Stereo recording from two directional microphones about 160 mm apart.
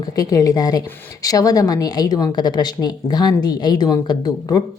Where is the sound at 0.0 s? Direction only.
25° left (ahead or behind).